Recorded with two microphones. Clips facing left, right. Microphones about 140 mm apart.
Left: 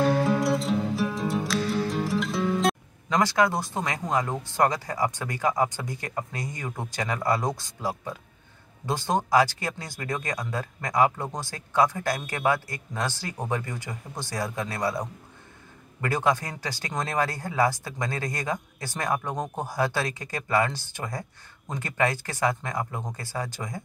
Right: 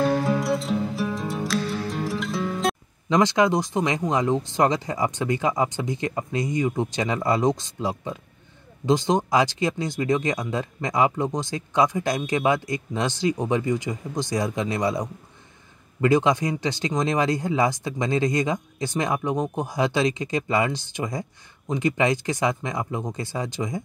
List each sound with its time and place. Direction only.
0.0 s music: centre (ahead or behind)
3.1 s speech: 20° right (ahead or behind)